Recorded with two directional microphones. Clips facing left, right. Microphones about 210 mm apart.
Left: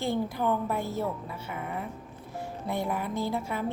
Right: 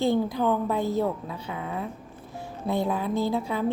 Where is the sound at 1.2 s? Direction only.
90° right.